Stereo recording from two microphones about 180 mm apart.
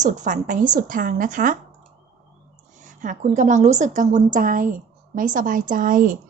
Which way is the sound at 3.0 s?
45° right (ahead or behind).